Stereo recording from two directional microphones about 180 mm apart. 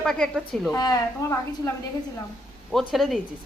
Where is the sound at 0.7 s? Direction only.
20° left (ahead or behind).